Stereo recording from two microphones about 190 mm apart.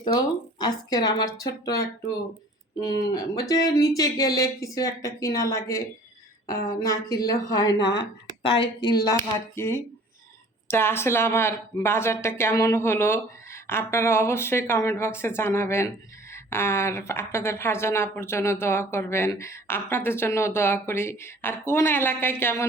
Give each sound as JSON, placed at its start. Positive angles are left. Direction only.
{"t": 0.0, "sound": "a woman's voice", "side_deg": 20}
{"t": 9.6, "sound": "a woman's voice", "side_deg": 10}